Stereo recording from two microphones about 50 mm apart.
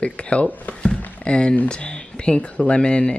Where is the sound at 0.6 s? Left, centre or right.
Centre.